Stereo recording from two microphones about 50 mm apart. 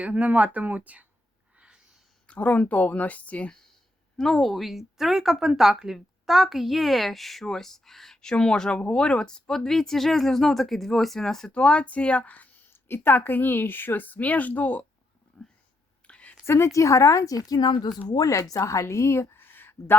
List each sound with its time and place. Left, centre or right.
0.0 s speech: right
1.5 s a sound: centre
2.2 s speech: left
4.2 s speech: centre
11.5 s speech: left
12.7 s a woman's voice: left
15.4 s a sound: left
16.5 s a woman's voice: left
18.3 s a woman's voice: left